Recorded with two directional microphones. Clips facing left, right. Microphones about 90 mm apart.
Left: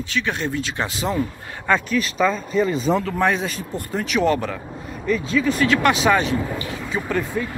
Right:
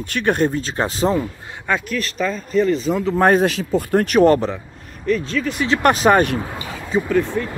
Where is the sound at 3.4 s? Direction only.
75° right (ahead or behind); by 4.3 s 45° right (ahead or behind).